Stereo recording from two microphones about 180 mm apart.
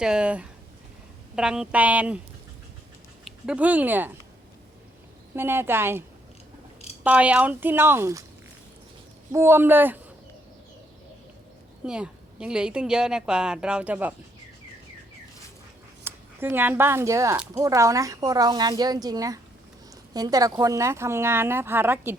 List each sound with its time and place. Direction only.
0.0 s speech: 5° right (ahead or behind)
3.2 s speech: 5° right (ahead or behind)
5.3 s speech: 10° right (ahead or behind)
7.0 s speech: 5° right (ahead or behind)
9.3 s speech: 15° right (ahead or behind)
11.9 s speech: 5° right (ahead or behind)
16.0 s speech: 10° right (ahead or behind)